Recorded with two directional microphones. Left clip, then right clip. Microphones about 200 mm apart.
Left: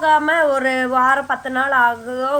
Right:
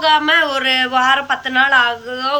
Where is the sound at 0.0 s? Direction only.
35° left (ahead or behind).